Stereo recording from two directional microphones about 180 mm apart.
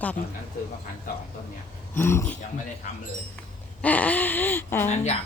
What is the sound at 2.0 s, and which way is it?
Speech, 10° left (ahead or behind).